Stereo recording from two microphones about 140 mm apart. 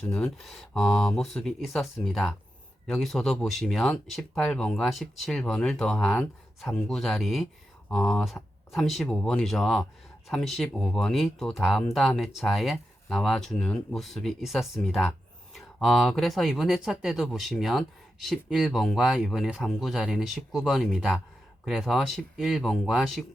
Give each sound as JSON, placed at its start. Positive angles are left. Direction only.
{"t": 0.0, "sound": "speech", "side_deg": 5}